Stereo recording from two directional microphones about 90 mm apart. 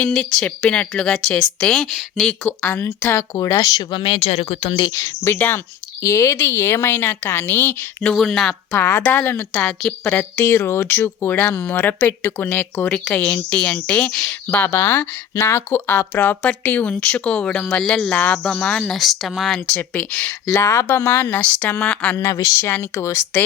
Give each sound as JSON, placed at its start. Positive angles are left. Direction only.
{"t": 0.1, "sound": "speech", "side_deg": 5}
{"t": 2.2, "sound": "speech", "side_deg": 15}
{"t": 3.6, "sound": "speech", "side_deg": 45}
{"t": 3.9, "sound": "speech", "side_deg": 80}
{"t": 5.2, "sound": "speech", "side_deg": 25}
{"t": 6.0, "sound": "speech", "side_deg": 35}
{"t": 8.1, "sound": "speech", "side_deg": 5}
{"t": 8.7, "sound": "speech", "side_deg": 25}
{"t": 9.5, "sound": "speech", "side_deg": 15}
{"t": 10.2, "sound": "speech", "side_deg": 30}
{"t": 14.4, "sound": "speech", "side_deg": 20}
{"t": 19.7, "sound": "speech", "side_deg": 15}
{"t": 20.5, "sound": "speech", "side_deg": 35}
{"t": 21.3, "sound": "speech", "side_deg": 15}